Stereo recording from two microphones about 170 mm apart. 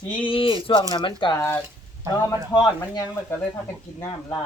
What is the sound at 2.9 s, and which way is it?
Speech, 20° left (ahead or behind).